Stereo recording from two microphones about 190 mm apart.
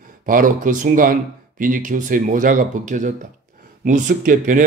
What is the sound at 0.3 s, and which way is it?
A man's voice, 45° right (ahead or behind).